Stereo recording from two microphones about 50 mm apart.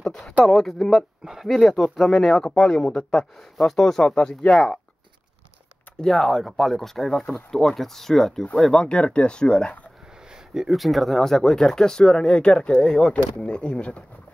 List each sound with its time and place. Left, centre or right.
0.0 s a sound: centre
0.5 s speech: centre
1.2 s speech: centre
1.5 s speech: centre
6.0 s speech: centre
8.8 s speech: left
10.5 s speech: centre; by 14.0 s left